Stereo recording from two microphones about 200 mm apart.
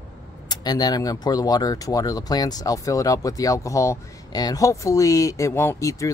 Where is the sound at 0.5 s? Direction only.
20° left (ahead or behind).